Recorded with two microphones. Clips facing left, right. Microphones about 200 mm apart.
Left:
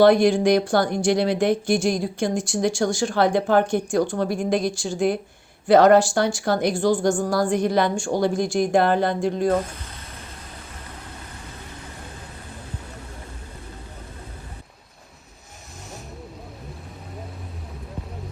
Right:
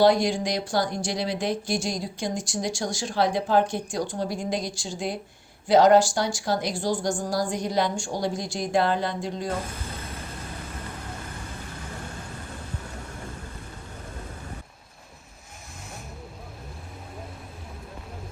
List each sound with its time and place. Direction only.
0.0 s speech: 60° left (ahead or behind)